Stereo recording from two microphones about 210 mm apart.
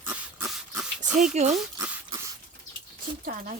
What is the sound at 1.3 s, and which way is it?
Speech, 35° right (ahead or behind).